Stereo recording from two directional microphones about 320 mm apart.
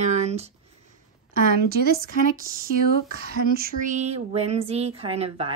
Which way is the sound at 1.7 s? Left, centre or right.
Right.